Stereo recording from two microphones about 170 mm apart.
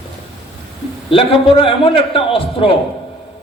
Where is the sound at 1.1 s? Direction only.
30° left (ahead or behind).